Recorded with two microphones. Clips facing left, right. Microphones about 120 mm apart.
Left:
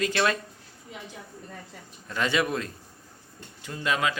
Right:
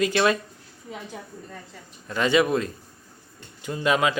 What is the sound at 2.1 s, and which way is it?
Speech, centre (ahead or behind).